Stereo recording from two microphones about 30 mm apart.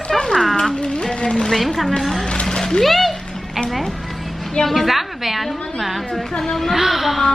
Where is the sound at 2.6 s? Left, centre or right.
Centre.